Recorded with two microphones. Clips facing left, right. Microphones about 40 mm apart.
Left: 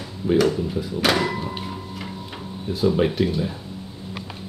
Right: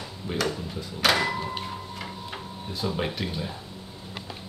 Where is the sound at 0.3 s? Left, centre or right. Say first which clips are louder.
Left 10 dB; centre.